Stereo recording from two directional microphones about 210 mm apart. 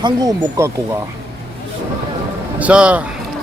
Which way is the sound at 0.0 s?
15° right (ahead or behind).